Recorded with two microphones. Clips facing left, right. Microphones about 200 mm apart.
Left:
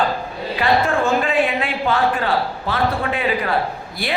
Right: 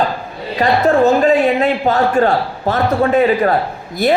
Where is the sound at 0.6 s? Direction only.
40° right (ahead or behind).